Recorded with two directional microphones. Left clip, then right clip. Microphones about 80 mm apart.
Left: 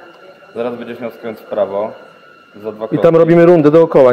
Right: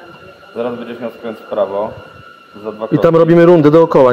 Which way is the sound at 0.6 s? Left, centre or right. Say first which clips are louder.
Even; left.